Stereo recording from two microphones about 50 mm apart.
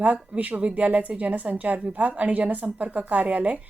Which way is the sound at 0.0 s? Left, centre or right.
Right.